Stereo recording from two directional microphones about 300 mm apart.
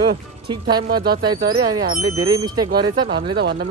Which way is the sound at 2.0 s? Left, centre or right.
Right.